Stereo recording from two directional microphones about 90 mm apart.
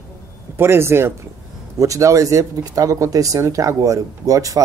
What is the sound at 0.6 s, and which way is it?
Speech, 30° right (ahead or behind).